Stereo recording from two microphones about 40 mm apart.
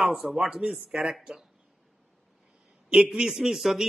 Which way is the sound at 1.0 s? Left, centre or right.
Centre.